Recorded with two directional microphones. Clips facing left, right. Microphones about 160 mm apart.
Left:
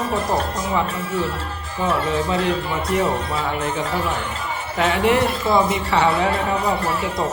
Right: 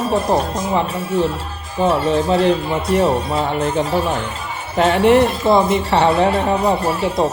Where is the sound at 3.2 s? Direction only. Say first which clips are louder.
Right 5 dB; 25° right (ahead or behind).